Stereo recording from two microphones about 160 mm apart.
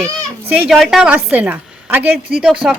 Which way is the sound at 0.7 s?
Centre (ahead or behind).